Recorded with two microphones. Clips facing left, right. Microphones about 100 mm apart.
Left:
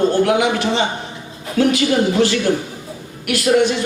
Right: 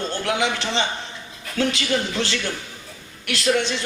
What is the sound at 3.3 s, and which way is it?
Speech, 25° right (ahead or behind).